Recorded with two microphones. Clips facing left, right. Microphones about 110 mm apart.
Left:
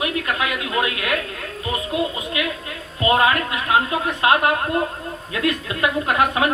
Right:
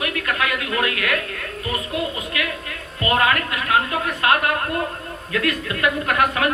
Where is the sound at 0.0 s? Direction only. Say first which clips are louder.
Left 1 dB; 20° left (ahead or behind).